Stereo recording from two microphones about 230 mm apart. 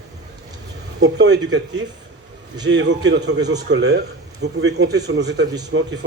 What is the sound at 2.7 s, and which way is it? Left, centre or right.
A man's voice, right.